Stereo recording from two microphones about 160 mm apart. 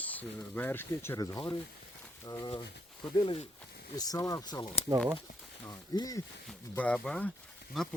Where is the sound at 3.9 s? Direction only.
20° left (ahead or behind).